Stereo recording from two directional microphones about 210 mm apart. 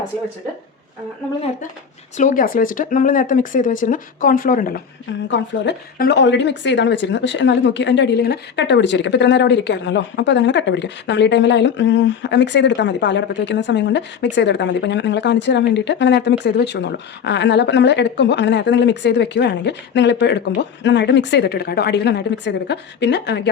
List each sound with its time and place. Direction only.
2.1 s speech: 40° left (ahead or behind)
5.3 s speech: 55° left (ahead or behind)